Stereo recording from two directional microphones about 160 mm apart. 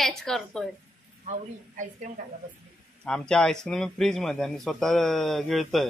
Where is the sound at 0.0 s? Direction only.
Centre (ahead or behind).